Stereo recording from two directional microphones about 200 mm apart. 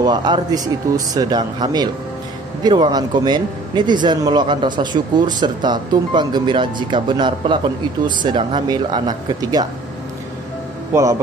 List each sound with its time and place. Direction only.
0.0 s a man's voice: 20° right (ahead or behind)
10.9 s a man's voice: 15° right (ahead or behind)